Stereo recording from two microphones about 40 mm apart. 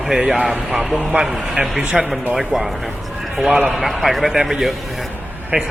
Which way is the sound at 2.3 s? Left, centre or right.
Centre.